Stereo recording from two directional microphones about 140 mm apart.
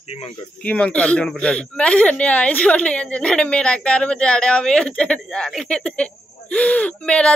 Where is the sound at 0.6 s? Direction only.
10° left (ahead or behind).